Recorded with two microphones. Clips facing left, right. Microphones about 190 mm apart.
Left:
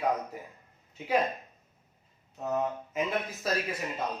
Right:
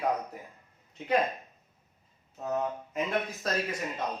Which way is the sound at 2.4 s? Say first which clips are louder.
Left 1 dB; centre (ahead or behind).